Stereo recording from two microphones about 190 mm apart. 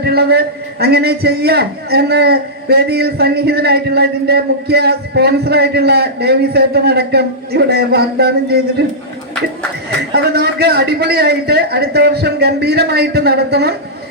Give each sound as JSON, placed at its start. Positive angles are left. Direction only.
{"t": 0.0, "sound": "a man's voice", "side_deg": -55}
{"t": 10.1, "sound": "a man's voice", "side_deg": -60}